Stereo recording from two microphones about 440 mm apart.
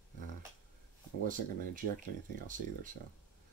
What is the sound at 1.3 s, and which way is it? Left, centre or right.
Speech, centre.